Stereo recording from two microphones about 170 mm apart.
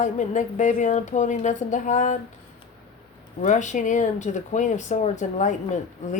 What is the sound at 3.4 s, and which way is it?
Speech, 45° left (ahead or behind).